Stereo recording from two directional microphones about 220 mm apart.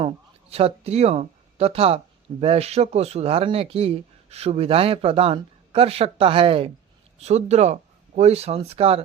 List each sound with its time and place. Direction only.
0.5 s speech: 30° right (ahead or behind)